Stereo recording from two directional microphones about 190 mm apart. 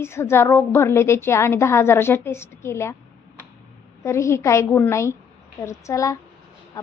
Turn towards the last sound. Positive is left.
turn(degrees=15)  # may be behind; listen again after turning